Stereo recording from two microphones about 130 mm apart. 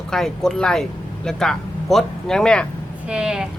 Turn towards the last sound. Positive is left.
turn(degrees=-5)  # may be behind; listen again after turning